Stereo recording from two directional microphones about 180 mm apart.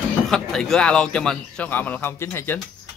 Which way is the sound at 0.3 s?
5° left (ahead or behind).